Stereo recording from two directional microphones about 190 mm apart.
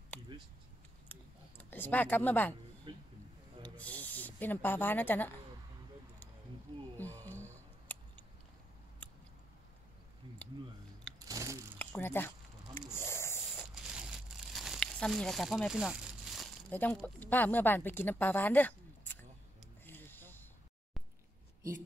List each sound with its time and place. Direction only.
1.6 s speech: 10° left (ahead or behind)
2.9 s a sound: 25° right (ahead or behind)
3.6 s snake: 10° left (ahead or behind)
7.0 s a sound: 10° left (ahead or behind)
11.1 s crunch: 20° right (ahead or behind)
11.8 s speech: 10° left (ahead or behind)
12.7 s snake: 15° left (ahead or behind)
14.3 s crumpling: centre (ahead or behind)
16.7 s speech: 10° left (ahead or behind)
19.8 s a sound: 10° left (ahead or behind)